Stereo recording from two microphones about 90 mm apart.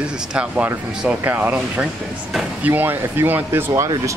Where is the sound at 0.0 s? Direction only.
10° right (ahead or behind).